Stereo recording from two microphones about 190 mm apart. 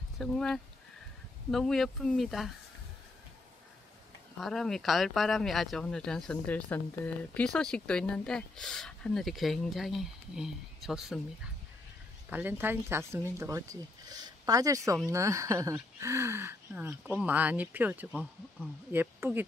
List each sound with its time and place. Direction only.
0.2 s speech: 5° left (ahead or behind)
4.4 s speech: centre (ahead or behind)
12.3 s speech: 10° right (ahead or behind)